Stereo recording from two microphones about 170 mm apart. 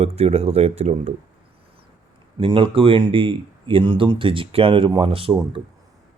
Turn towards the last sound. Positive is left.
turn(degrees=-30)  # may be behind; listen again after turning